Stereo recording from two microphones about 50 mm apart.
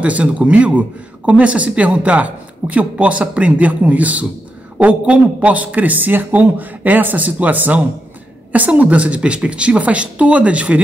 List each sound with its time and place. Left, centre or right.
0.0 s a man's voice: right